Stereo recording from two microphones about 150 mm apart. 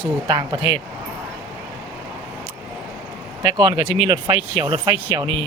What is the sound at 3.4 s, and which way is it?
Speech, 30° right (ahead or behind).